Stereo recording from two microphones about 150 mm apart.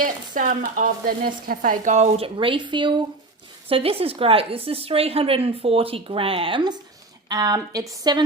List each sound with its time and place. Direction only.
0.0 s a woman's voice: 65° right (ahead or behind); by 8.2 s 25° right (ahead or behind)